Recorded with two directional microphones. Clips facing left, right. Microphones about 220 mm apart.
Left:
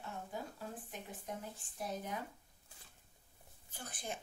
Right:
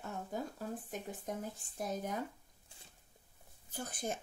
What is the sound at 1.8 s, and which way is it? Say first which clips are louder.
Speech: right 4 dB; 45° right (ahead or behind).